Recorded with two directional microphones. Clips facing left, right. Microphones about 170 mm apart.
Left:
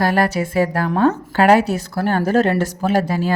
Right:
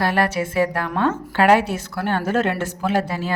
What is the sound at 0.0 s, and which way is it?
Speech, 40° left (ahead or behind).